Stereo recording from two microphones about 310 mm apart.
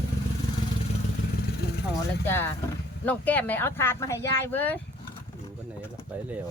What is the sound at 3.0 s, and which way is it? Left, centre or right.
Speech, centre.